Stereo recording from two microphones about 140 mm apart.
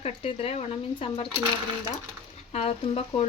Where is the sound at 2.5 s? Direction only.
45° left (ahead or behind).